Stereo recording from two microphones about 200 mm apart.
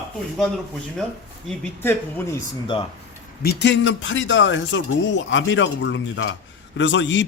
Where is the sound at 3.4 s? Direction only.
65° left (ahead or behind).